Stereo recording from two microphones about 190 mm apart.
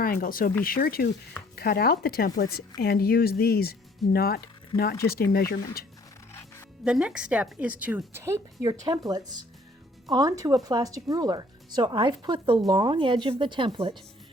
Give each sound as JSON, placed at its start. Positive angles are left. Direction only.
{"t": 0.0, "sound": "speech", "side_deg": 50}
{"t": 6.8, "sound": "a woman's voice", "side_deg": -5}